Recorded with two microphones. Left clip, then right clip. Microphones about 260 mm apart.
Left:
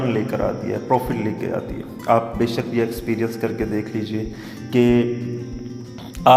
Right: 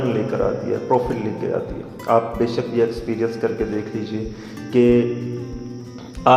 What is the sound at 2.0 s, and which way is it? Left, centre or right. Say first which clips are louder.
A man's voice: even; left.